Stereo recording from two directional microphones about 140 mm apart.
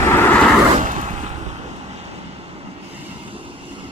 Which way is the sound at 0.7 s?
60° right (ahead or behind).